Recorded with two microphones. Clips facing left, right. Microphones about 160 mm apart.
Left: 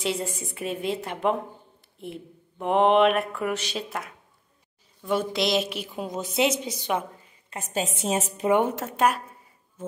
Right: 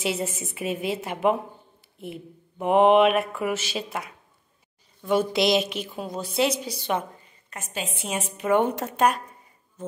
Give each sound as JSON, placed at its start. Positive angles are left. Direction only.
{"t": 0.0, "sound": "speech", "side_deg": -5}
{"t": 6.0, "sound": "a woman's voice", "side_deg": 20}
{"t": 7.4, "sound": "a woman's voice", "side_deg": 35}
{"t": 8.5, "sound": "speech", "side_deg": 5}